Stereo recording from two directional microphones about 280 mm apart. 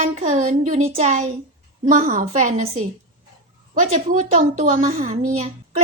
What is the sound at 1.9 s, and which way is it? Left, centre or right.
A woman's voice, right.